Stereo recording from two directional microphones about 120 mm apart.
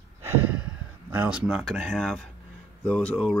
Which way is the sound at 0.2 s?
10° right (ahead or behind).